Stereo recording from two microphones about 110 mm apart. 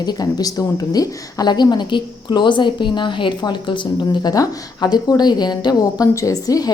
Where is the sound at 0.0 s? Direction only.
40° left (ahead or behind).